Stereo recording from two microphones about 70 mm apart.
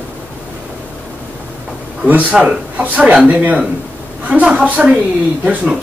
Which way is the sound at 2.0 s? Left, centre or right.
Right.